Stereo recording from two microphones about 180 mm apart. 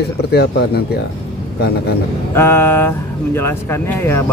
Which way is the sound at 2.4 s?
15° left (ahead or behind).